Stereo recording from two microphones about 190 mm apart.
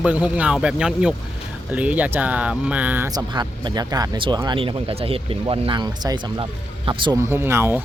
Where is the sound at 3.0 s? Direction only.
20° right (ahead or behind).